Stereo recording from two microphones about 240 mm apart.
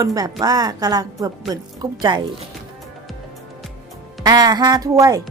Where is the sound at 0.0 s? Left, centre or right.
Centre.